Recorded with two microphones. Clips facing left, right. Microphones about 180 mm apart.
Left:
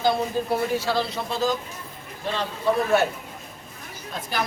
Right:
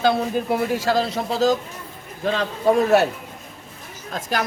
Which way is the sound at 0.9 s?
40° right (ahead or behind).